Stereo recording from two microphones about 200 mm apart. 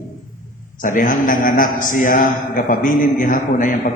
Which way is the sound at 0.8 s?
40° left (ahead or behind).